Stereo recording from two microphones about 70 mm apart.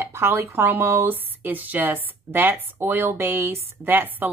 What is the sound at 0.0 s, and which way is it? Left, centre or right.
Speech, right.